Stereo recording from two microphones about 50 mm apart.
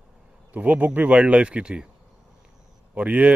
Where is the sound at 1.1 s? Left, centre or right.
Right.